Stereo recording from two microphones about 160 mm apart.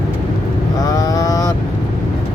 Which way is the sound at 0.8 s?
25° left (ahead or behind).